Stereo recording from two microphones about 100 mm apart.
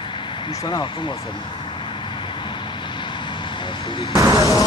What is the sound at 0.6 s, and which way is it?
Speech, 50° left (ahead or behind).